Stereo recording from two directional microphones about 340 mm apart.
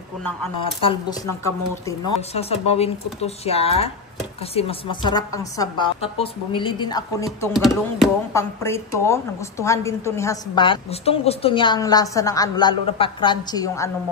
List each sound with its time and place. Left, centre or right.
1.9 s speech: centre